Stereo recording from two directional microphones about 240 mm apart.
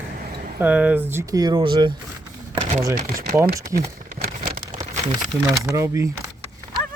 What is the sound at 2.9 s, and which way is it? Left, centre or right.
Speech, right.